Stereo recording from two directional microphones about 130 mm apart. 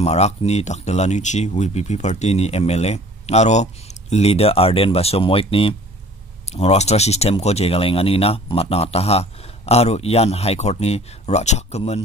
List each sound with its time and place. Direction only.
0.0 s speech: 55° left (ahead or behind)
6.4 s speech: 55° left (ahead or behind)